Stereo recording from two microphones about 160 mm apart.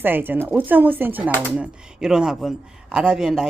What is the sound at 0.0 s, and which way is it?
Speech, 10° right (ahead or behind).